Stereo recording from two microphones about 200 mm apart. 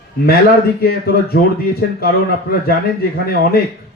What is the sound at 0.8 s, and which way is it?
Speech, 50° left (ahead or behind).